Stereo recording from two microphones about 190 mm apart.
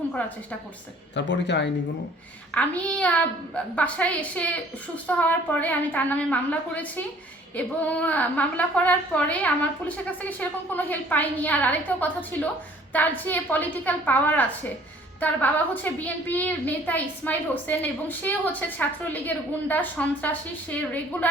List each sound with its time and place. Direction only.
1.1 s speech: 65° left (ahead or behind)
2.5 s a woman's voice: 5° left (ahead or behind)